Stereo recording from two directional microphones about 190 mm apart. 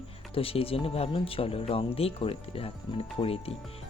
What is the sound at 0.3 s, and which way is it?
Speech, 30° left (ahead or behind).